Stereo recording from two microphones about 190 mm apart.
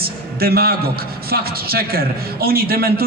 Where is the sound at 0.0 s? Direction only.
55° right (ahead or behind).